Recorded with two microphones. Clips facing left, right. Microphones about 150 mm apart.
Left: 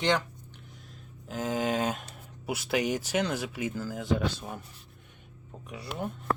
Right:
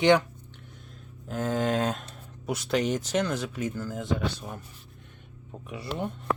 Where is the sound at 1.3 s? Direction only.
5° left (ahead or behind).